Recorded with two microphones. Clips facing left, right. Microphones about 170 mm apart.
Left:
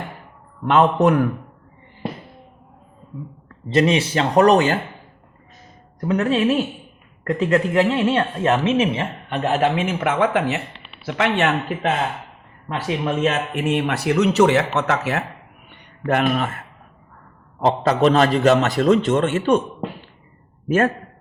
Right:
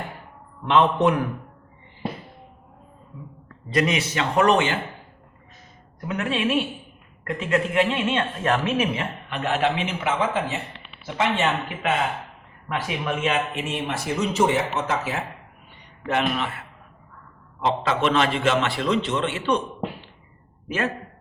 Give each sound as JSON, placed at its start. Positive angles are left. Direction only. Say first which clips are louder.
{"t": 0.6, "sound": "a man's voice", "louder": "left 3 dB", "side_deg": 45}
{"t": 3.7, "sound": "a woman's voice", "louder": "left 5 dB", "side_deg": 30}
{"t": 6.0, "sound": "a woman's voice", "louder": "left 7 dB", "side_deg": 35}
{"t": 12.6, "sound": "speech", "louder": "left 4 dB", "side_deg": 35}
{"t": 15.7, "sound": "a man's voice", "louder": "left 4 dB", "side_deg": 50}
{"t": 20.7, "sound": "a man's voice", "louder": "left 8 dB", "side_deg": 45}